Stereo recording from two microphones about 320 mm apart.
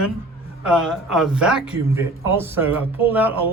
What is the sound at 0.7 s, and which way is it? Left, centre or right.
Speech, centre.